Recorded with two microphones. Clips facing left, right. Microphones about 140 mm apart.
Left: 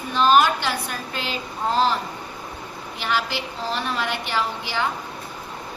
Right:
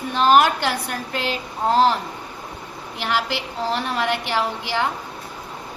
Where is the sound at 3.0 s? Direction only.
65° right (ahead or behind).